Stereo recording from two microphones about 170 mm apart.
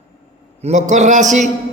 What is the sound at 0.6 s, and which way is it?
Speech, 45° right (ahead or behind).